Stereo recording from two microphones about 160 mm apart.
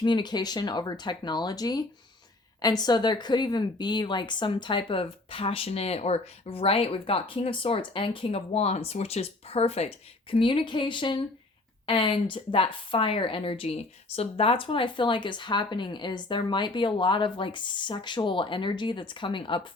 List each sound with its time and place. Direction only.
0.0 s speech: 30° left (ahead or behind)